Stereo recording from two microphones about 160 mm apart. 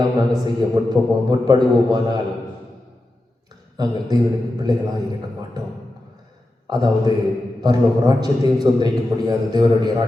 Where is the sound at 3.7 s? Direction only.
25° right (ahead or behind).